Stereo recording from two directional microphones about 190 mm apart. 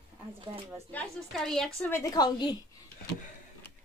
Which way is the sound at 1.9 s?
20° left (ahead or behind).